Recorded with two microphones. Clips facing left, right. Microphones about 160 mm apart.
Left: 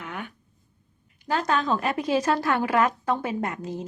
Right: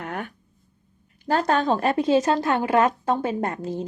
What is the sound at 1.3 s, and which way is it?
A woman's voice, 35° right (ahead or behind).